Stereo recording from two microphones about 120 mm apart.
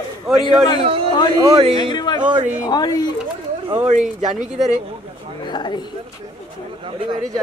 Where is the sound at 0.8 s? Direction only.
50° right (ahead or behind).